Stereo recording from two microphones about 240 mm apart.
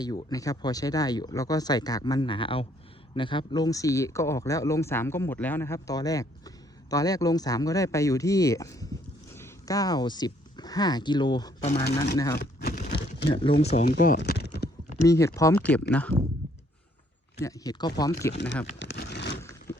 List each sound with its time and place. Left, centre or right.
0.0 s speech: centre
12.4 s a sound: left
13.4 s speech: left
13.8 s speech: left
15.0 s speech: centre
17.4 s speech: centre
18.3 s speech: left
18.8 s vehicle: left
19.4 s vehicle: centre